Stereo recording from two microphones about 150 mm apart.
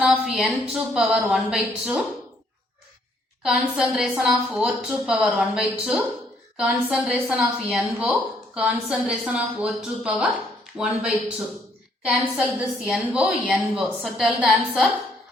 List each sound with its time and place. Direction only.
0.0 s a woman's voice: 5° right (ahead or behind)
3.4 s a woman's voice: 5° right (ahead or behind)
12.0 s a woman's voice: 10° right (ahead or behind)